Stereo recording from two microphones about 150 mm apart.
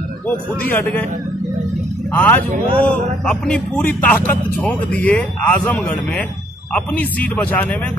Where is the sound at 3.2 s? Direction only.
5° left (ahead or behind).